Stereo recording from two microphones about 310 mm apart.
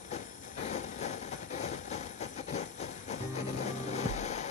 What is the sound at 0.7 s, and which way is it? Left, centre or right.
Vehicle, left.